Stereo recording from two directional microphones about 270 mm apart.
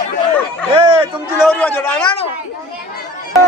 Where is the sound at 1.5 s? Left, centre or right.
Centre.